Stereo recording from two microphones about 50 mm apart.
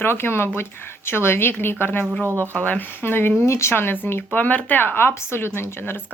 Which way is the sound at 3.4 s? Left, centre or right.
Left.